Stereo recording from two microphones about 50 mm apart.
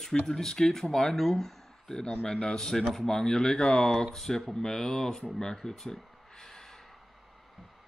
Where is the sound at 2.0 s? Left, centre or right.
Centre.